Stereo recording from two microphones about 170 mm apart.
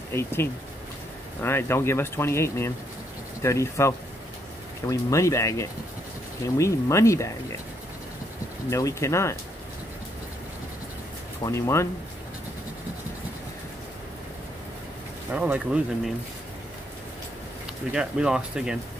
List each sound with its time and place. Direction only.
0.1 s speech: 15° left (ahead or behind)
8.6 s speech: 20° left (ahead or behind)
11.4 s speech: 15° left (ahead or behind)
15.3 s speech: 10° right (ahead or behind)
17.9 s speech: 5° right (ahead or behind)